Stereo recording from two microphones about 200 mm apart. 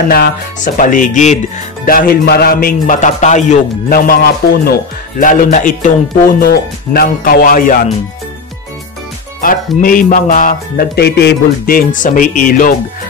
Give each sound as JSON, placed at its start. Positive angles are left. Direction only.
{"t": 0.1, "sound": "speech", "side_deg": 45}
{"t": 1.9, "sound": "speech", "side_deg": 45}
{"t": 5.2, "sound": "speech", "side_deg": 40}
{"t": 9.4, "sound": "speech", "side_deg": 45}